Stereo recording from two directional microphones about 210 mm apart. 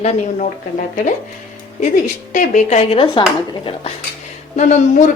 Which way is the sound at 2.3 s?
35° left (ahead or behind).